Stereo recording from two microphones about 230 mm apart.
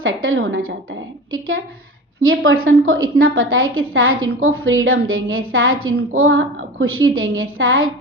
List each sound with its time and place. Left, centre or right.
0.0 s a woman's voice: right